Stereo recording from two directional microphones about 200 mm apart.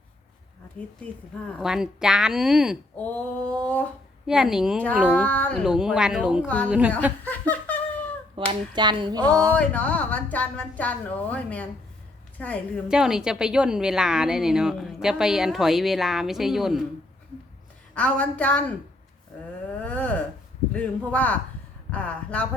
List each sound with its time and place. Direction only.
1.5 s a woman's voice: 5° right (ahead or behind)
3.0 s a woman's voice: 5° left (ahead or behind)
4.3 s a woman's voice: 5° right (ahead or behind)
7.3 s laughter: 10° left (ahead or behind)
8.4 s a woman's voice: 25° right (ahead or behind)
9.6 s a woman's voice: 5° left (ahead or behind)
12.9 s a woman's voice: 5° right (ahead or behind)
17.9 s a woman's voice: 5° left (ahead or behind)
19.8 s a sound: 5° left (ahead or behind)
20.7 s a woman's voice: 5° left (ahead or behind)